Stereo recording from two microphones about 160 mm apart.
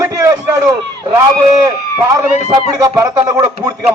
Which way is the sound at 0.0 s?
20° right (ahead or behind).